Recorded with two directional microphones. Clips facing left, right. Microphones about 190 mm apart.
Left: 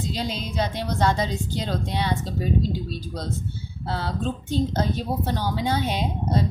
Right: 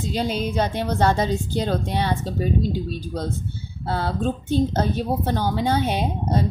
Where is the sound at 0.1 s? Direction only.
50° right (ahead or behind).